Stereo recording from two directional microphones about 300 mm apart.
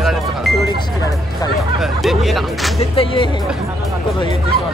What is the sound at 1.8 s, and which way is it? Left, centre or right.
Speech, centre.